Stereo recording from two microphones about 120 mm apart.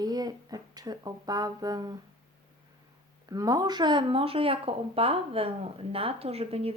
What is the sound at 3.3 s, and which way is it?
Speech, 30° right (ahead or behind).